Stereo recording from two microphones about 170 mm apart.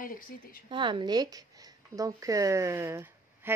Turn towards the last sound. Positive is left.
turn(degrees=-15)  # may be behind; listen again after turning